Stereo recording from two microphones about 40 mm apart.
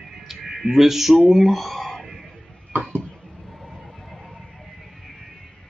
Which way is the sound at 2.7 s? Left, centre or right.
Centre.